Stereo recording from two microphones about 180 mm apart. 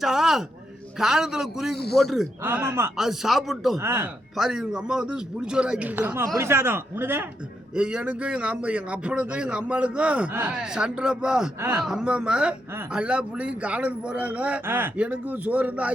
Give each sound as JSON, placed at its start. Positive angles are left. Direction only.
{"t": 0.0, "sound": "a sound", "side_deg": 0}
{"t": 0.9, "sound": "speech", "side_deg": 0}
{"t": 1.7, "sound": "speech", "side_deg": 65}
{"t": 2.0, "sound": "speech", "side_deg": 0}
{"t": 2.4, "sound": "a woman's voice", "side_deg": -10}
{"t": 3.0, "sound": "speech", "side_deg": 0}
{"t": 3.8, "sound": "a woman's voice", "side_deg": -15}